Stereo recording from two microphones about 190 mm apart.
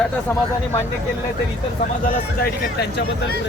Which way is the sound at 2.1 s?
55° left (ahead or behind).